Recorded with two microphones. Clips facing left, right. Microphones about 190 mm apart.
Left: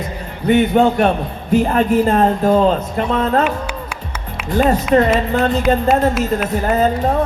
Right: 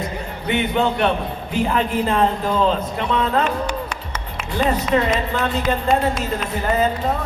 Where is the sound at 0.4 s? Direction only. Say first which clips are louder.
Left 8 dB; 45° left (ahead or behind).